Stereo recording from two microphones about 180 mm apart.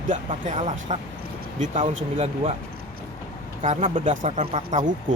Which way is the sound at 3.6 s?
35° right (ahead or behind).